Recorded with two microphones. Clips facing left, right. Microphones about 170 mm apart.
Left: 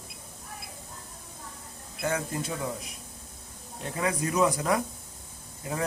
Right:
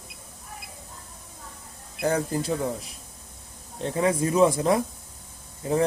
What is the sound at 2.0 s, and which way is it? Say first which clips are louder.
Speech: right 5 dB; 35° right (ahead or behind).